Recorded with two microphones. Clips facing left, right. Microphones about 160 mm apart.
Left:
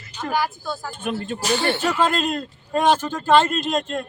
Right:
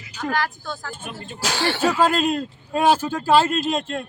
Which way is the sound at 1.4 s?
90° right.